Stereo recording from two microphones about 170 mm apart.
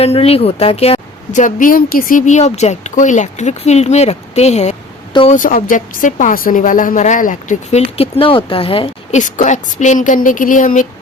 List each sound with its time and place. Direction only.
0.0 s a woman's voice: 35° left (ahead or behind)
5.3 s speech: 55° left (ahead or behind)
7.9 s a woman's voice: 35° left (ahead or behind)
9.1 s speech: 45° left (ahead or behind)